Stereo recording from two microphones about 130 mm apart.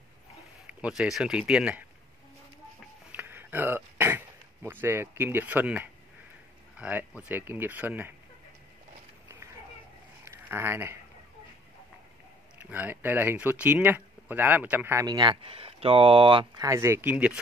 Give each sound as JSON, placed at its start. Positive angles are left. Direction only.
{"t": 0.7, "sound": "speech", "side_deg": -10}
{"t": 3.1, "sound": "throat clearing", "side_deg": -15}
{"t": 4.6, "sound": "speech", "side_deg": -15}
{"t": 10.2, "sound": "a sound", "side_deg": -20}
{"t": 12.5, "sound": "speech", "side_deg": -15}
{"t": 15.0, "sound": "speech", "side_deg": -35}
{"t": 15.4, "sound": "speech", "side_deg": -45}
{"t": 16.6, "sound": "speech", "side_deg": -20}